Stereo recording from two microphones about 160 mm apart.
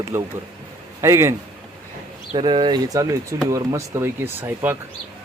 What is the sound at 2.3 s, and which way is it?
Speech, 30° right (ahead or behind).